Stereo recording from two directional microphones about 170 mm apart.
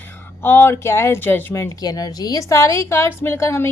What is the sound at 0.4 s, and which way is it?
A woman's voice, 15° left (ahead or behind).